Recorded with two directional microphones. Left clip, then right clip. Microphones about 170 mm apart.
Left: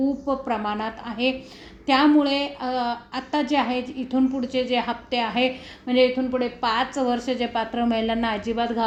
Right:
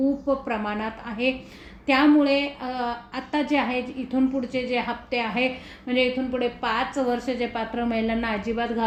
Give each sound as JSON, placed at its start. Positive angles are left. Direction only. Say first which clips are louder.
{"t": 0.3, "sound": "a woman's voice", "louder": "left 1 dB", "side_deg": 35}